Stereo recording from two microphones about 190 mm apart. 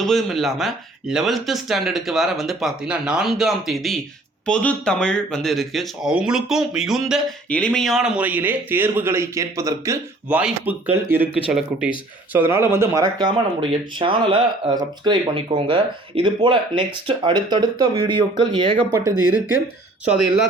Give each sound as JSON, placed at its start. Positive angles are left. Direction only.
{"t": 0.0, "sound": "speech", "side_deg": 0}